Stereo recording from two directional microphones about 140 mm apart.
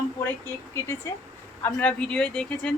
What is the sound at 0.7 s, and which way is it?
A woman's voice, 20° left (ahead or behind).